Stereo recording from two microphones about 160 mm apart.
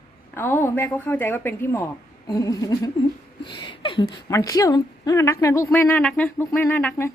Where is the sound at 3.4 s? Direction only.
30° left (ahead or behind).